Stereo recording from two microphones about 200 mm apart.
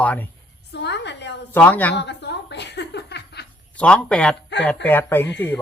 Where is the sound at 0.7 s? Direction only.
60° left (ahead or behind).